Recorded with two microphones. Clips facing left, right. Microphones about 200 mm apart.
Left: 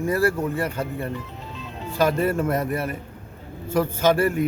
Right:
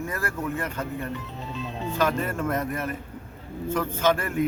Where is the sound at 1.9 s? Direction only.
35° left (ahead or behind).